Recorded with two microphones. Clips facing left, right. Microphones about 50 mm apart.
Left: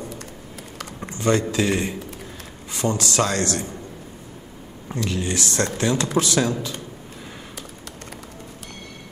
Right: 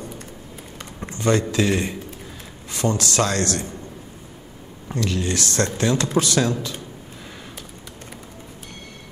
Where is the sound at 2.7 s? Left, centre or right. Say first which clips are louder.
Right 1 dB; left.